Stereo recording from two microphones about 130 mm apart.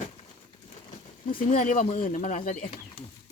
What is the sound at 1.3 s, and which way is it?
Speech, 85° left.